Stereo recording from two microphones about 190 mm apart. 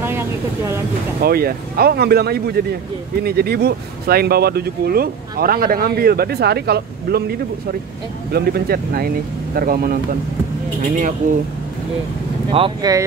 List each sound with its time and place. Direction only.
0.0 s vehicle: 10° right (ahead or behind)
1.2 s speech: 55° right (ahead or behind)
12.4 s speech: 30° right (ahead or behind)